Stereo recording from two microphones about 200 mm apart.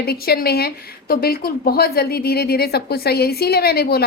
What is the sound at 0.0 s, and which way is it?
A woman's voice, 50° left (ahead or behind).